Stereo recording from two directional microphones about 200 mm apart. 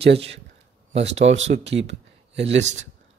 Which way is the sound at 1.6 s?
60° right (ahead or behind).